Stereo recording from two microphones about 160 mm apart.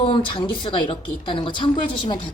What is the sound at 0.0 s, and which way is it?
Speech, 35° left (ahead or behind).